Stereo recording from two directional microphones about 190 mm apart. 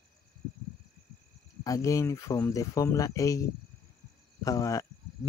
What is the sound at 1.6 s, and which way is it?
Speech, 15° left (ahead or behind).